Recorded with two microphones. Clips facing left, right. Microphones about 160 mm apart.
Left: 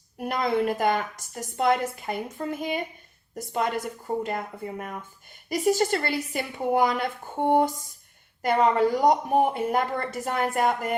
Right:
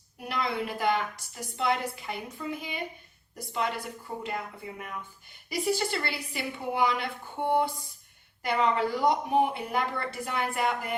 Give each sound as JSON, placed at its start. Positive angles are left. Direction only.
{"t": 0.2, "sound": "a woman's voice", "side_deg": 45}